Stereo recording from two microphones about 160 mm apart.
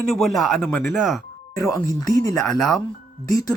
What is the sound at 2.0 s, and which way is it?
Speech, 20° left (ahead or behind).